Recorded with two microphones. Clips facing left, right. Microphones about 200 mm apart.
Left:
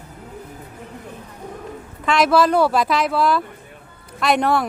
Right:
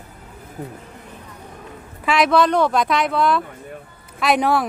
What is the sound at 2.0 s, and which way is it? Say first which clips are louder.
Speech: even; centre (ahead or behind).